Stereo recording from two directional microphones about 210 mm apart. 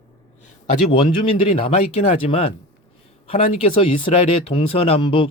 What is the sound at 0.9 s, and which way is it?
Speech, 25° left (ahead or behind).